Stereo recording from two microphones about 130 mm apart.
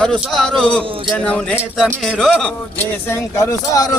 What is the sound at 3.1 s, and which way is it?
Speech, 25° left (ahead or behind).